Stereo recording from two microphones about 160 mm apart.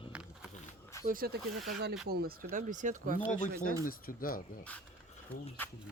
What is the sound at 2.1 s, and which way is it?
Speech, 70° right (ahead or behind).